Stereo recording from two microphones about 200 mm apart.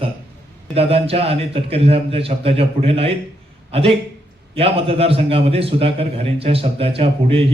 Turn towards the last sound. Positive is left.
turn(degrees=-30)  # may be behind; listen again after turning